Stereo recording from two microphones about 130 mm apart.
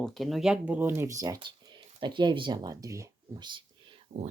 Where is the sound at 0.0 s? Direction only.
Centre (ahead or behind); by 1.4 s 25° right (ahead or behind).